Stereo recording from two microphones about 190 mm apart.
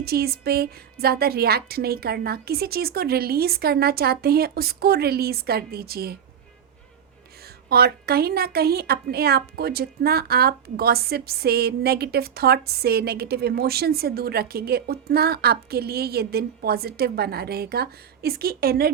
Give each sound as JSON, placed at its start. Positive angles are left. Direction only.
{"t": 0.0, "sound": "a woman's voice", "side_deg": -55}
{"t": 7.4, "sound": "a woman's voice", "side_deg": -55}